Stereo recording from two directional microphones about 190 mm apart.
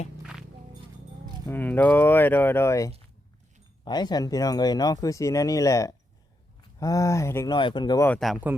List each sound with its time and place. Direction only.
0.2 s walk: 5° right (ahead or behind)
1.5 s speech: 10° left (ahead or behind)
8.0 s speech: 5° left (ahead or behind)